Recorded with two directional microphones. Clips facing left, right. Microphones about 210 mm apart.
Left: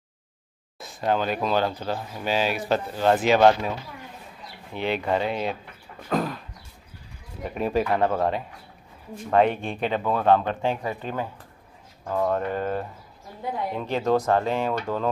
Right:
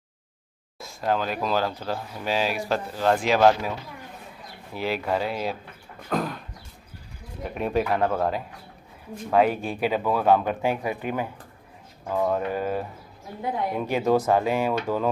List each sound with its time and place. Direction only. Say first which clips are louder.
0.7 s speech: left 1 dB; centre (ahead or behind)
4.7 s speech: left 1 dB; 5° right (ahead or behind)
7.4 s speech: left 1 dB; centre (ahead or behind)